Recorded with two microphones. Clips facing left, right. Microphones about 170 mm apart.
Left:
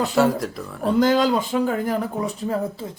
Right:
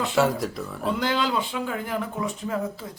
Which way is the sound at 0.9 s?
40° left (ahead or behind).